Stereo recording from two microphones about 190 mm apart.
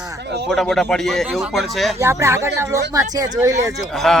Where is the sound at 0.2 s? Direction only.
60° right (ahead or behind).